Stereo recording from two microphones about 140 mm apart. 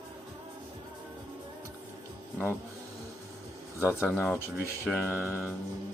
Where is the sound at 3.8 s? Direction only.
15° left (ahead or behind).